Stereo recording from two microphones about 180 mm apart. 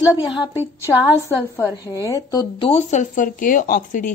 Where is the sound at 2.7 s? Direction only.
40° left (ahead or behind).